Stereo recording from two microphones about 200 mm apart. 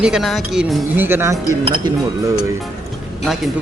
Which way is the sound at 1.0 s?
10° right (ahead or behind).